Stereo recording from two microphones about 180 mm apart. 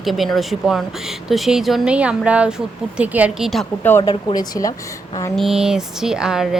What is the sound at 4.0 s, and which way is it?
Speech, 25° left (ahead or behind).